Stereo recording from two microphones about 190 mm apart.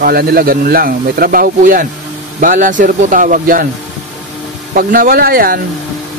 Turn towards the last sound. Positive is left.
turn(degrees=-50)  # may be behind; listen again after turning